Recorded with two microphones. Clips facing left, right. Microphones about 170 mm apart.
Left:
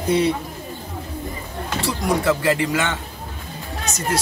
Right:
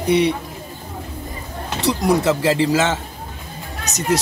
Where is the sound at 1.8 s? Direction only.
20° right (ahead or behind).